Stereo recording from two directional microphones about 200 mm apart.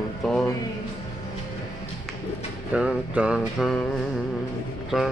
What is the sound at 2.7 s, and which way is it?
Speech, 5° right (ahead or behind).